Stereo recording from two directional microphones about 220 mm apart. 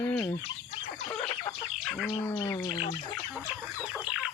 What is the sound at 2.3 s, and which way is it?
Bird, 10° left (ahead or behind).